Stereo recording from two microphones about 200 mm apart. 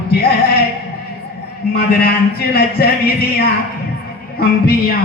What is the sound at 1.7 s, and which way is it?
A man's voice, 50° left (ahead or behind).